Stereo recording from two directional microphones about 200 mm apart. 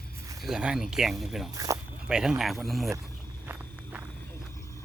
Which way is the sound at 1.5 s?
15° right (ahead or behind).